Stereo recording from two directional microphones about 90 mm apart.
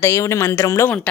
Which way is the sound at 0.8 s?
20° left (ahead or behind).